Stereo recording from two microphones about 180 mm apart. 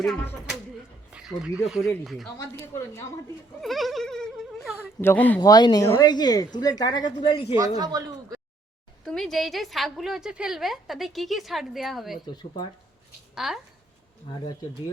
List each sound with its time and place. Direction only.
0.0 s a woman's voice: 5° left (ahead or behind)
2.4 s speech: 15° left (ahead or behind)
3.6 s a woman's voice: centre (ahead or behind)
5.4 s a woman's voice: 25° left (ahead or behind)
7.8 s speech: 20° right (ahead or behind)
9.0 s a woman's voice: centre (ahead or behind)
12.2 s a woman's voice: 25° left (ahead or behind)
13.3 s speech: centre (ahead or behind)